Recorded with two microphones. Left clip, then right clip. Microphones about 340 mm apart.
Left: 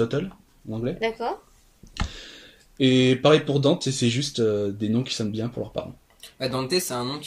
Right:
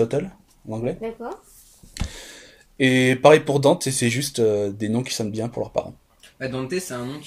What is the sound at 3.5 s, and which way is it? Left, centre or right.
Speech, right.